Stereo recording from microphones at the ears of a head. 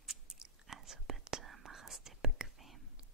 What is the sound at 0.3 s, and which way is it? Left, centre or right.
Whispering, right.